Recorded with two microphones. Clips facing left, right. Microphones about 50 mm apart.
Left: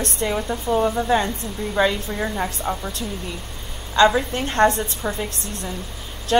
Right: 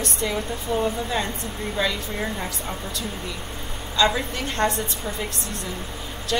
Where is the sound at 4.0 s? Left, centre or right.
Left.